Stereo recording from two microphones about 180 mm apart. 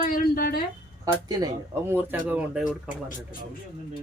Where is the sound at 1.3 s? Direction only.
15° right (ahead or behind).